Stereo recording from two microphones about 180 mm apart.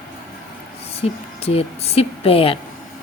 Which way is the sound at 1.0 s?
35° left (ahead or behind).